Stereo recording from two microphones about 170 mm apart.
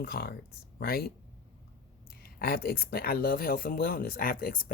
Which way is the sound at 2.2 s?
65° left (ahead or behind).